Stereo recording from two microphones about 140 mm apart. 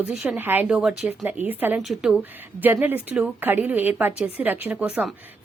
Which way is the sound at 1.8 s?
5° right (ahead or behind).